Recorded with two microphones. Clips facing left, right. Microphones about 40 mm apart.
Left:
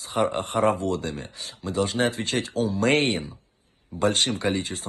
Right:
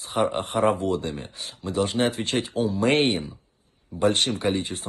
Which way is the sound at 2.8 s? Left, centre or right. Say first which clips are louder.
Right 1 dB; left.